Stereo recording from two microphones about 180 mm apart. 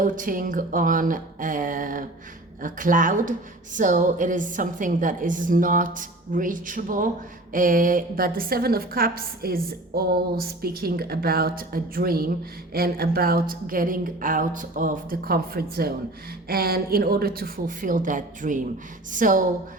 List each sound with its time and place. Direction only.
0.0 s a woman's voice: 50° right (ahead or behind)